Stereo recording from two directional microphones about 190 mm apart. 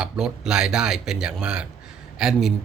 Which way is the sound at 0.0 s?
5° right (ahead or behind).